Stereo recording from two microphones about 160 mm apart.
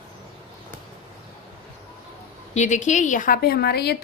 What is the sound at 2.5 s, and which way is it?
A woman's voice, 50° left (ahead or behind).